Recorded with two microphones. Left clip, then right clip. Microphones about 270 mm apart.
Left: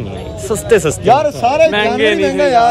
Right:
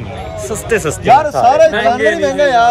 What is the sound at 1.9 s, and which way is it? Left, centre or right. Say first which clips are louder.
Speech: even; centre.